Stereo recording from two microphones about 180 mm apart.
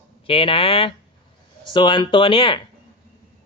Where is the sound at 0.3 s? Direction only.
30° left (ahead or behind).